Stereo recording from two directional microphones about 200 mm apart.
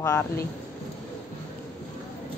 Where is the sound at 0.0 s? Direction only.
15° left (ahead or behind).